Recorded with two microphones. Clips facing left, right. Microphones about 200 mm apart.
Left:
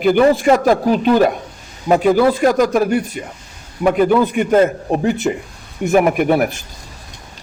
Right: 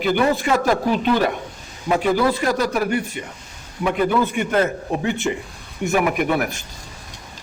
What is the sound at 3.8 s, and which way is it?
Speech, 50° left (ahead or behind).